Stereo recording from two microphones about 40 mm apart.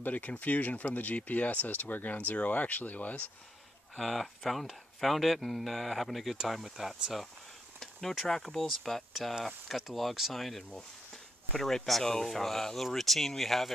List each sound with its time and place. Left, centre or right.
0.0 s speech: left
2.1 s speech: left
3.9 s speech: centre
11.5 s speech: centre